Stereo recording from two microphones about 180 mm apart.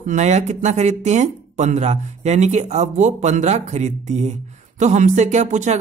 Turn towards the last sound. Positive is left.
turn(degrees=-40)  # may be behind; listen again after turning